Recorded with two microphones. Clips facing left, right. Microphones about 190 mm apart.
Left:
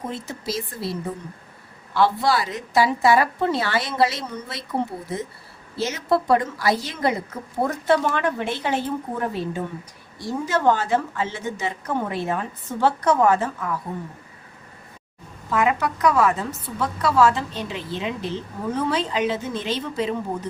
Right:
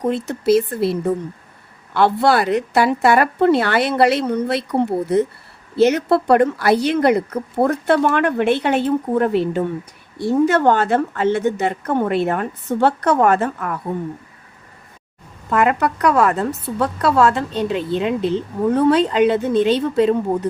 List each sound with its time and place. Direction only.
0.1 s a woman's voice: 65° right (ahead or behind)
15.4 s a woman's voice: 60° right (ahead or behind)